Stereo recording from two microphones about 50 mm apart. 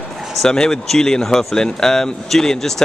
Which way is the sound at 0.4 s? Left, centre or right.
Centre.